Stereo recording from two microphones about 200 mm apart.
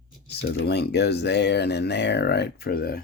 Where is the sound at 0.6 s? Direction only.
55° left (ahead or behind).